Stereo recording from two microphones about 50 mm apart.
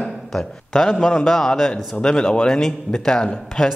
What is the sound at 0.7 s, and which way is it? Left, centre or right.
A man's voice, centre.